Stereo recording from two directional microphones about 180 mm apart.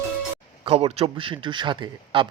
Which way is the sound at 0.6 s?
30° right (ahead or behind).